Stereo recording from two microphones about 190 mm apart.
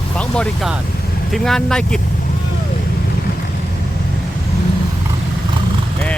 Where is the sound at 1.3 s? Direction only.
Centre (ahead or behind).